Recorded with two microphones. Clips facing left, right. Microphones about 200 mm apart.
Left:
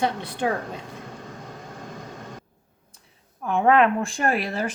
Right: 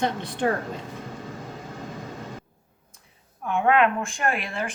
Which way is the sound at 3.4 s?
35° left (ahead or behind).